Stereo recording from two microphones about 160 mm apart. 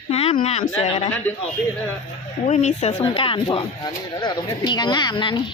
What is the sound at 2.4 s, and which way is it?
Speech, 45° left (ahead or behind).